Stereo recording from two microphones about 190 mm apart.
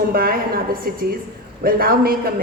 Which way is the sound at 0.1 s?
50° right (ahead or behind).